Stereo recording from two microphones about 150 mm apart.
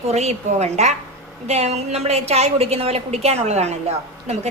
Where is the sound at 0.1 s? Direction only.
45° right (ahead or behind).